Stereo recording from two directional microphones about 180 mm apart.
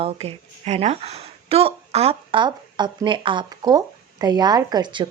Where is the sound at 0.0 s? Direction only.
35° right (ahead or behind).